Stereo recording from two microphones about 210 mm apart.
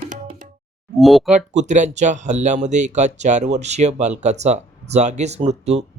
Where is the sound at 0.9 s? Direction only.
Centre (ahead or behind).